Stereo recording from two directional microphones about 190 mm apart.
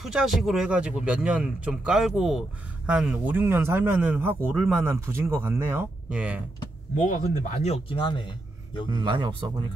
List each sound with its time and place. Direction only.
0.0 s speech: 5° right (ahead or behind)
7.0 s a man's voice: 40° left (ahead or behind); by 8.8 s 25° left (ahead or behind)
8.9 s speech: 25° right (ahead or behind)